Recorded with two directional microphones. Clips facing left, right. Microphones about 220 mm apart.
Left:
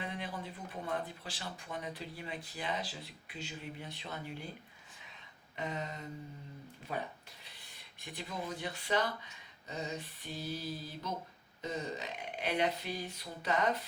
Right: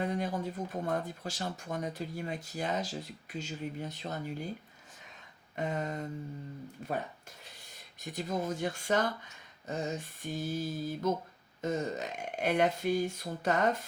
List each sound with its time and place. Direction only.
0.0 s speech: 45° right (ahead or behind)
5.5 s speech: 50° right (ahead or behind)
8.0 s speech: 40° right (ahead or behind)